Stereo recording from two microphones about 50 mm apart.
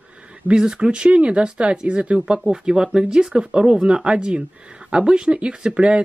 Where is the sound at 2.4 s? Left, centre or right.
Centre.